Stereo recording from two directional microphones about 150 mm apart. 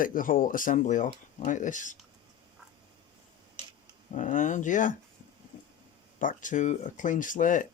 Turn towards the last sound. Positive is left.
turn(degrees=60)  # may be behind; listen again after turning